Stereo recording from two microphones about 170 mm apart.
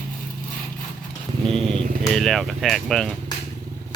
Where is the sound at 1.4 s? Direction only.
30° right (ahead or behind).